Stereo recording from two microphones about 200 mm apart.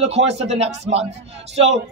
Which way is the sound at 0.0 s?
30° right (ahead or behind).